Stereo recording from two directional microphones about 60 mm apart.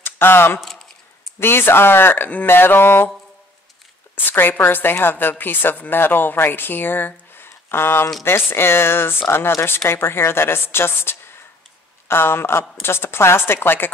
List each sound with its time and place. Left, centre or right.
0.0 s speech: left
0.6 s a sound: centre
1.4 s a woman's voice: left
4.1 s a woman's voice: left